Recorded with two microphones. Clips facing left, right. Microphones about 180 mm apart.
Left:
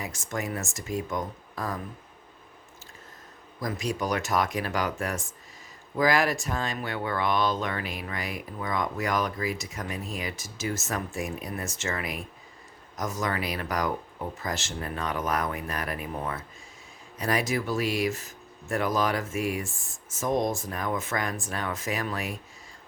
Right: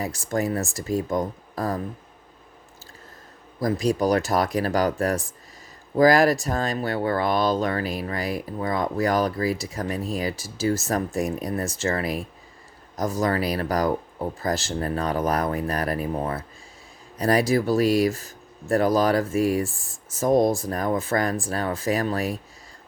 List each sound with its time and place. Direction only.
0.0 s speech: 35° right (ahead or behind)
3.6 s speech: 35° right (ahead or behind)